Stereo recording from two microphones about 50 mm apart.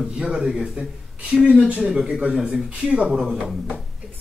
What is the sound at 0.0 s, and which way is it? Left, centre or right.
Speech, centre.